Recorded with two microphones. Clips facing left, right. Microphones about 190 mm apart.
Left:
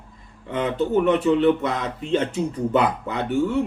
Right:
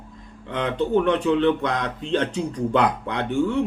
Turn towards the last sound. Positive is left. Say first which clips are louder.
# even
turn(degrees=5)  # may be behind; listen again after turning